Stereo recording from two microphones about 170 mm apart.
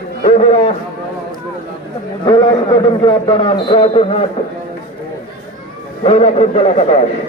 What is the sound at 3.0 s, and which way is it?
A man's voice, 25° left (ahead or behind).